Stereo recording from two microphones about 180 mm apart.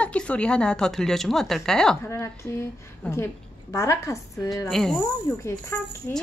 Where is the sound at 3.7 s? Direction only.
15° left (ahead or behind).